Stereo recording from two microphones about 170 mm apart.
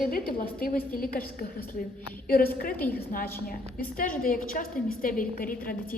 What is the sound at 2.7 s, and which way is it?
Speech, 10° left (ahead or behind).